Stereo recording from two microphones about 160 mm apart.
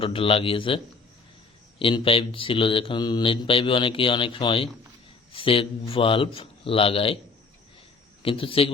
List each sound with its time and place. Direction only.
0.0 s a man's voice: 35° left (ahead or behind)
1.8 s a man's voice: 35° left (ahead or behind)
8.2 s a man's voice: 35° left (ahead or behind)